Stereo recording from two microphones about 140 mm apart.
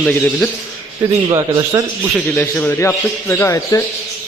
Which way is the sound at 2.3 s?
10° left (ahead or behind).